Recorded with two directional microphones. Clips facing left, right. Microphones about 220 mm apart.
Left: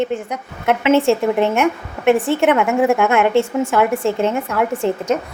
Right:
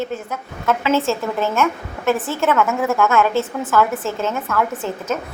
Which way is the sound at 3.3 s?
30° left (ahead or behind).